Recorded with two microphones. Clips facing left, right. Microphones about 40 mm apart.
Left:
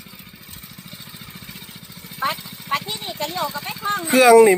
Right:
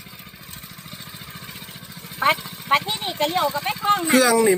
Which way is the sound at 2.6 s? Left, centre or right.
Right.